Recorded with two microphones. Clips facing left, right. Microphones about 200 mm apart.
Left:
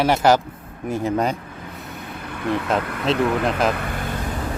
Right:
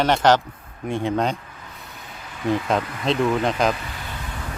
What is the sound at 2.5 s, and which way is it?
Speech, centre (ahead or behind).